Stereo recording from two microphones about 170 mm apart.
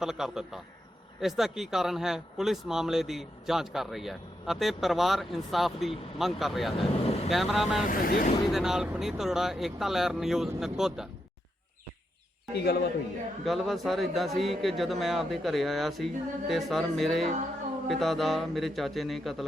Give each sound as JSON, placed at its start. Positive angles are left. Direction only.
{"t": 0.0, "sound": "speech", "side_deg": 0}
{"t": 6.7, "sound": "speech", "side_deg": 35}
{"t": 7.3, "sound": "speech", "side_deg": 0}
{"t": 7.9, "sound": "speech", "side_deg": 55}
{"t": 8.5, "sound": "speech", "side_deg": -5}
{"t": 13.4, "sound": "speech", "side_deg": 0}